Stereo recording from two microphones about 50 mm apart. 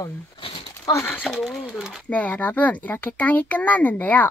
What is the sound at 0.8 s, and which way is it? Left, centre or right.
Speech, left.